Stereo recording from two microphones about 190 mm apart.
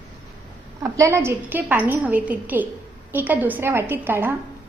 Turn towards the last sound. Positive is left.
turn(degrees=-10)  # may be behind; listen again after turning